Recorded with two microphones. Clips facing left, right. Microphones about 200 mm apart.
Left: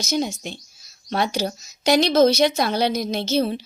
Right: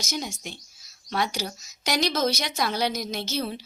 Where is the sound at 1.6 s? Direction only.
25° left (ahead or behind).